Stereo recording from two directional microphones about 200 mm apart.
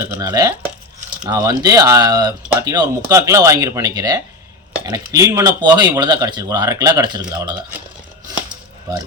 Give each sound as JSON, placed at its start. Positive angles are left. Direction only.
{"t": 0.1, "sound": "speech", "side_deg": -15}